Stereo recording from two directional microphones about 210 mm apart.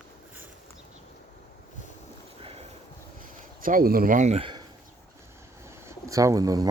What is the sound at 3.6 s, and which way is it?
Speech, 40° right (ahead or behind).